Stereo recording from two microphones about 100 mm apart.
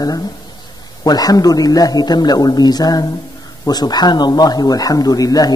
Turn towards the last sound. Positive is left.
turn(degrees=40)  # may be behind; listen again after turning